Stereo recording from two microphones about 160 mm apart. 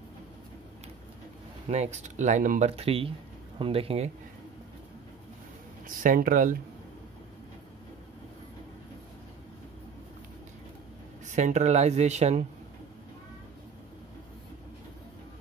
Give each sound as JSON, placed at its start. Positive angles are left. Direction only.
{"t": 1.7, "sound": "speech", "side_deg": -45}
{"t": 2.7, "sound": "speech", "side_deg": -35}
{"t": 5.9, "sound": "speech", "side_deg": -55}
{"t": 11.2, "sound": "speech", "side_deg": -50}